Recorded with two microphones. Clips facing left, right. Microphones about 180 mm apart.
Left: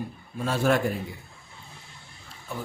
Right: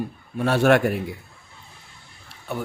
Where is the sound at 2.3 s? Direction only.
70° right (ahead or behind).